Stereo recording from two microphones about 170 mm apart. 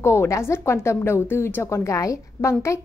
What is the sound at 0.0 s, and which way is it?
A woman's voice, 15° left (ahead or behind).